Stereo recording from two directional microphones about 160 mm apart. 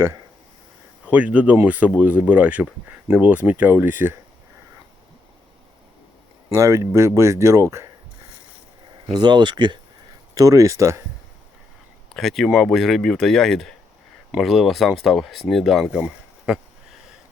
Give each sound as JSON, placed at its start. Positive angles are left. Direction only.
{"t": 1.0, "sound": "speech", "side_deg": -10}
{"t": 6.5, "sound": "speech", "side_deg": -20}
{"t": 9.1, "sound": "speech", "side_deg": -30}
{"t": 12.1, "sound": "speech", "side_deg": 0}